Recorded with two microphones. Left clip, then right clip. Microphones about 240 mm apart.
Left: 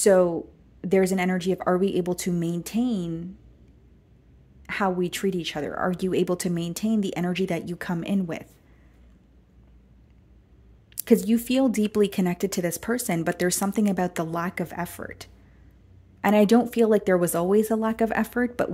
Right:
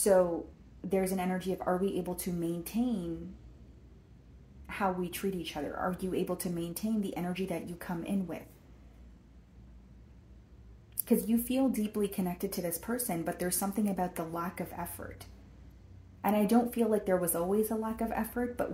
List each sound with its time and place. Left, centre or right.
0.0 s speech: left
4.6 s speech: left
11.0 s speech: left